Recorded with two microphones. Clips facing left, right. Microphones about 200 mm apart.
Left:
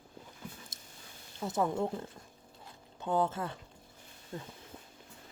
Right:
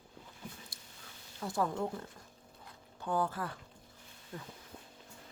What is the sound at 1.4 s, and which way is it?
Speech, 20° left (ahead or behind).